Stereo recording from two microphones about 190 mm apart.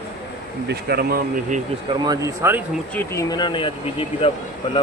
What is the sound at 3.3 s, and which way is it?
Speech, 25° left (ahead or behind).